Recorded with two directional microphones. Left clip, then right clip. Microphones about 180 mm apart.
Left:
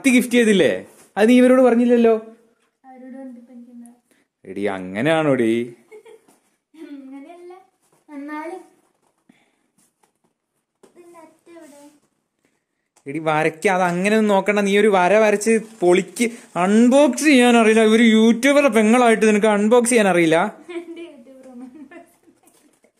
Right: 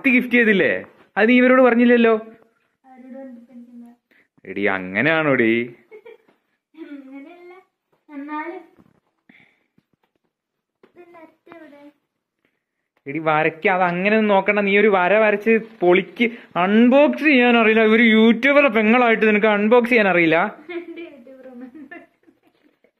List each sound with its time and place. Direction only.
0.0 s a man's voice: 25° left (ahead or behind)
1.6 s speech: 5° left (ahead or behind)
4.1 s speech: 20° left (ahead or behind)
13.0 s speech: 25° left (ahead or behind)